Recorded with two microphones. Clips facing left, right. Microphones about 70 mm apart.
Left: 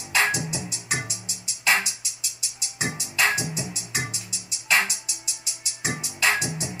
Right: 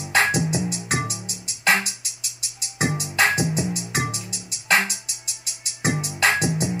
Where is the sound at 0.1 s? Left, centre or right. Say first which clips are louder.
Right 3 dB; right.